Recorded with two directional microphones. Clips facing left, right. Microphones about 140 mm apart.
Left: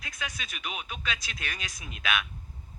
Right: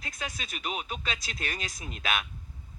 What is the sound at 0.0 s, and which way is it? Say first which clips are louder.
A man's voice: right 1 dB; 35° right (ahead or behind).